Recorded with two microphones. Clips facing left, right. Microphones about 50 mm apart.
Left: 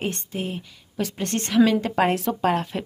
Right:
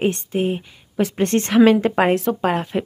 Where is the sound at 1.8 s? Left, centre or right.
Right.